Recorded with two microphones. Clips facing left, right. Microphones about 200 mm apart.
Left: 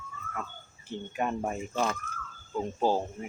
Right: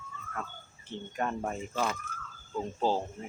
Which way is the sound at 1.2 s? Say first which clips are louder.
Left 2 dB; 15° left (ahead or behind).